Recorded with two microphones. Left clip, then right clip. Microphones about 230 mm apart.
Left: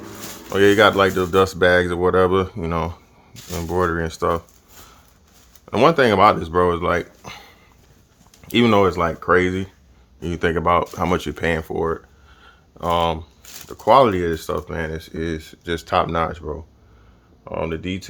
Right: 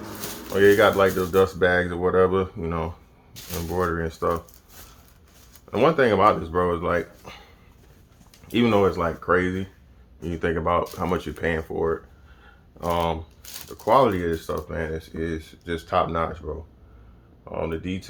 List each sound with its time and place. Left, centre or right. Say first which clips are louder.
0.5 s speech: left 3 dB; left
5.7 s speech: left 4 dB; left
12.4 s a sound: left 4 dB; left
13.7 s speech: left 5 dB; left
17.4 s speech: left 3 dB; left